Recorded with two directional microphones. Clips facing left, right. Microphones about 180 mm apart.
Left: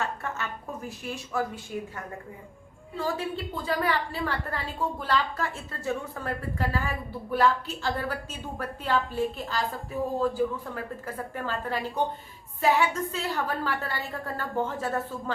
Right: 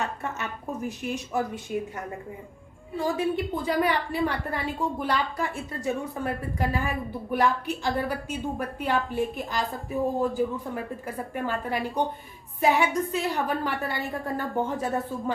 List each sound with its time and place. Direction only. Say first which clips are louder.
0.0 s a woman's voice: right 1 dB; 20° right (ahead or behind)
3.0 s a woman's voice: right 4 dB; 15° right (ahead or behind)